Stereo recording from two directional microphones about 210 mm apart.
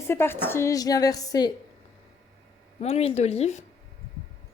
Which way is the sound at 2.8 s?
30° left (ahead or behind).